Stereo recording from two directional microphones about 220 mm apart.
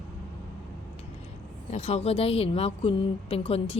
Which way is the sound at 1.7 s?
30° left (ahead or behind).